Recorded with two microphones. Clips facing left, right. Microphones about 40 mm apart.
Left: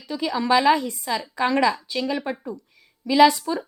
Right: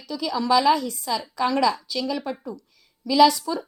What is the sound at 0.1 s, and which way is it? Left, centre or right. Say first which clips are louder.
A woman's voice: left 1 dB; left.